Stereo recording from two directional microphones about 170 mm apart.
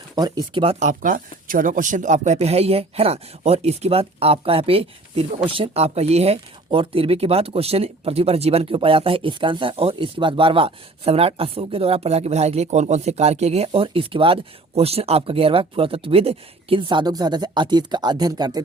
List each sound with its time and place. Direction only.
0.2 s speech: 20° right (ahead or behind)